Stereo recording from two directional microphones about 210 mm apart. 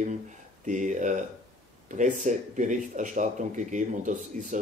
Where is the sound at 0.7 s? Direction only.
35° right (ahead or behind).